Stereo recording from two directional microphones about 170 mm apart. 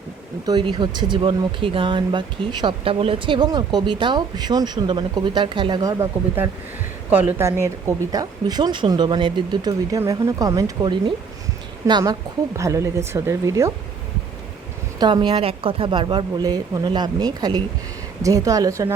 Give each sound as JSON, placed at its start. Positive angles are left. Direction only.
{"t": 0.4, "sound": "speech", "side_deg": -25}
{"t": 14.9, "sound": "speech", "side_deg": -25}